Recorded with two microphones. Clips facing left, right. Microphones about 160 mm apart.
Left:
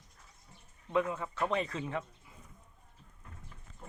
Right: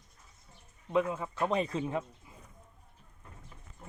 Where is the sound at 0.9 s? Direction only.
15° right (ahead or behind).